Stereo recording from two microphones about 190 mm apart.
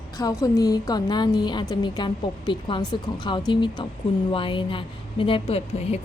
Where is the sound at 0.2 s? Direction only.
20° left (ahead or behind).